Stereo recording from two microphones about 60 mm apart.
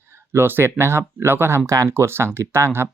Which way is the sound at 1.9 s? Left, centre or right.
Right.